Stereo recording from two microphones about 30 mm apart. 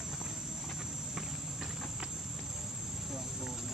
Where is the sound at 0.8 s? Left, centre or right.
Centre.